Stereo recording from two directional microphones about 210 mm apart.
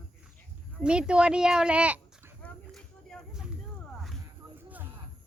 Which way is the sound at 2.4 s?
5° left (ahead or behind).